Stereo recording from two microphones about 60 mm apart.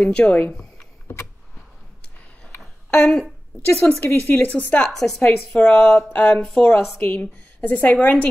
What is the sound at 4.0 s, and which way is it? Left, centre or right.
Speech, left.